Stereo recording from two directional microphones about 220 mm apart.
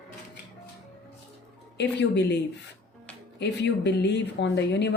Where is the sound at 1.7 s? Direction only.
50° left (ahead or behind).